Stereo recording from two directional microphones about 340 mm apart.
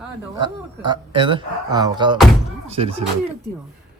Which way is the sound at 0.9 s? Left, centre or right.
Centre.